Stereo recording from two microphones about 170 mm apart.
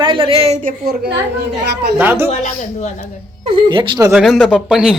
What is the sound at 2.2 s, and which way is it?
Speech, 45° left (ahead or behind).